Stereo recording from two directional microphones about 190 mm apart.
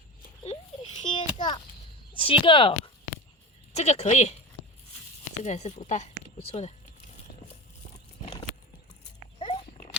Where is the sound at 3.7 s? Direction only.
35° left (ahead or behind).